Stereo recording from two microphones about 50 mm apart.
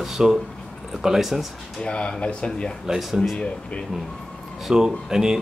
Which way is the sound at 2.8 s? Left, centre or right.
Centre.